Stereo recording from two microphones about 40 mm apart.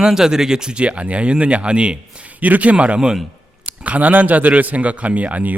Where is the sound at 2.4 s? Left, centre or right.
Right.